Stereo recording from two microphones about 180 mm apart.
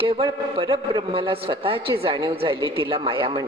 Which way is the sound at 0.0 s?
30° right (ahead or behind).